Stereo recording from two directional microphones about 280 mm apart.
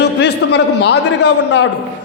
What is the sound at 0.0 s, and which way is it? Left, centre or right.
A man's voice, left.